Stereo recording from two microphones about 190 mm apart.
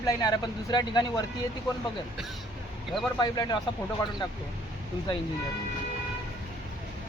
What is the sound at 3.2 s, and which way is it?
Speech, 20° left (ahead or behind).